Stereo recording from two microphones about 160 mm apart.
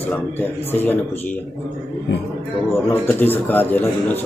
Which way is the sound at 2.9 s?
10° left (ahead or behind).